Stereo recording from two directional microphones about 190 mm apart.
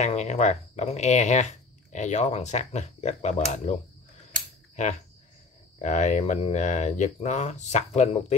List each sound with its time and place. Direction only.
0.0 s speech: 35° left (ahead or behind)
4.8 s speech: 40° left (ahead or behind)